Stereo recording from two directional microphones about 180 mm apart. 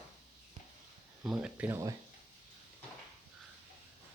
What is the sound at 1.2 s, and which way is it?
Speech, 5° right (ahead or behind).